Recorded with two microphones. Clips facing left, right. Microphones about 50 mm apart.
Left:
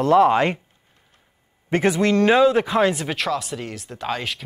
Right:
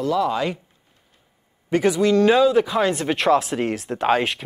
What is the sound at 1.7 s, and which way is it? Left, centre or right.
Speech, left.